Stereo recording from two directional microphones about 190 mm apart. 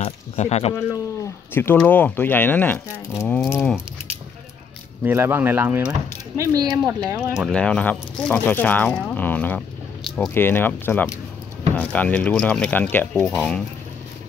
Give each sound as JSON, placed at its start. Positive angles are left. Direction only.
{"t": 0.0, "sound": "speech", "side_deg": 35}
{"t": 1.5, "sound": "speech", "side_deg": 10}
{"t": 3.5, "sound": "a sound", "side_deg": -5}
{"t": 5.0, "sound": "speech", "side_deg": -10}
{"t": 6.8, "sound": "a sound", "side_deg": 0}
{"t": 7.3, "sound": "speech", "side_deg": 0}
{"t": 10.0, "sound": "squish", "side_deg": 0}
{"t": 10.3, "sound": "speech", "side_deg": 10}